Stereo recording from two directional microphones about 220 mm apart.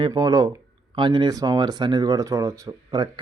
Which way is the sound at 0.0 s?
20° right (ahead or behind).